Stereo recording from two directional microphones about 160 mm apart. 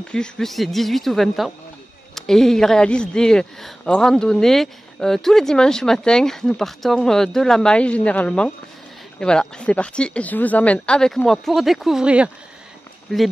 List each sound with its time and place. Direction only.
0.1 s a man's voice: 5° left (ahead or behind)